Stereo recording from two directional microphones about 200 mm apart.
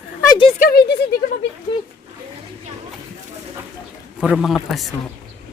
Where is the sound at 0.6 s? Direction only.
50° left (ahead or behind).